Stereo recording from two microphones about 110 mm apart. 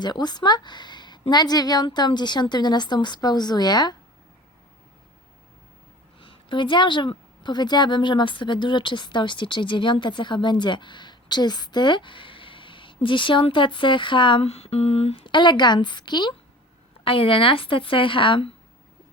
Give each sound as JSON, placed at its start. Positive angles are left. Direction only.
{"t": 0.0, "sound": "a woman's voice", "side_deg": 40}
{"t": 6.1, "sound": "a woman's voice", "side_deg": 50}
{"t": 14.4, "sound": "a woman's voice", "side_deg": 65}
{"t": 17.0, "sound": "a woman's voice", "side_deg": 55}